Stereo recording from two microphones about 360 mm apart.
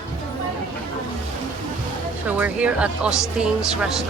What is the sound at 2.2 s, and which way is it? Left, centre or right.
Speech, centre.